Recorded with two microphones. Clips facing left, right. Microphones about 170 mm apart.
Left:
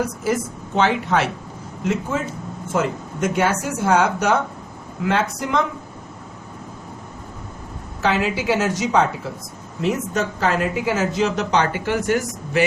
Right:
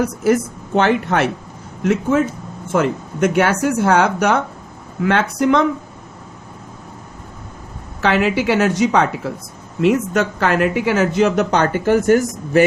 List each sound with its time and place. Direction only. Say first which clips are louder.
0.8 s a woman's voice: right 3 dB; 55° right (ahead or behind)
8.0 s a woman's voice: right 4 dB; 65° right (ahead or behind); by 12.6 s 45° right (ahead or behind)